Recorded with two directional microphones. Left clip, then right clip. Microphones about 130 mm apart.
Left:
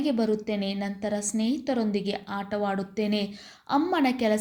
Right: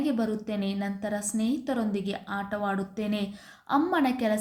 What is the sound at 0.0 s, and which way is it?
A woman's voice, 20° left (ahead or behind).